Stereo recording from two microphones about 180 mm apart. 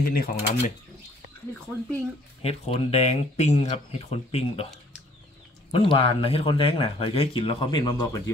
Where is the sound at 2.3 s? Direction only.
35° left (ahead or behind).